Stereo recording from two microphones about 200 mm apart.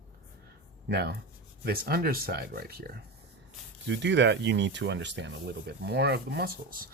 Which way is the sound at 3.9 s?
60° right (ahead or behind).